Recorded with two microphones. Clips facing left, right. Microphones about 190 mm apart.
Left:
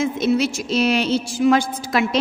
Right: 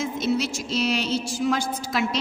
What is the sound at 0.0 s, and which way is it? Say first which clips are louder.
A woman's voice: left 6 dB; 55° left (ahead or behind).